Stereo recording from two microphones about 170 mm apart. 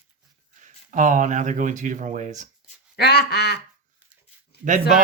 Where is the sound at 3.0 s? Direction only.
70° left (ahead or behind).